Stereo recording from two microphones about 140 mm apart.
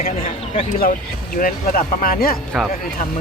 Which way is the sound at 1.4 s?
90° left.